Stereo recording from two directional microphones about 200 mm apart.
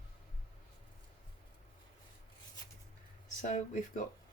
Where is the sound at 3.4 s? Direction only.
40° left (ahead or behind).